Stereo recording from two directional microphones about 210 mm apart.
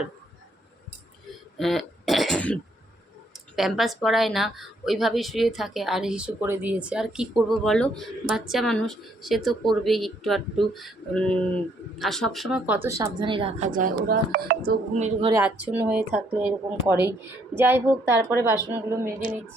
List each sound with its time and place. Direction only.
1.5 s throat clearing: centre (ahead or behind)
3.3 s speech: centre (ahead or behind)
13.1 s a woman's voice: 25° right (ahead or behind)
13.7 s speech: 40° right (ahead or behind)
14.9 s a woman's voice: 35° right (ahead or behind)
15.3 s speech: 10° right (ahead or behind)